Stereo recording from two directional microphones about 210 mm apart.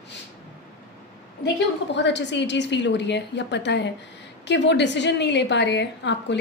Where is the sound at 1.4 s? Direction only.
55° left (ahead or behind).